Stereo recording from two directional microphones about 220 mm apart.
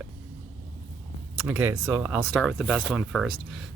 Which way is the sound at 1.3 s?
5° right (ahead or behind).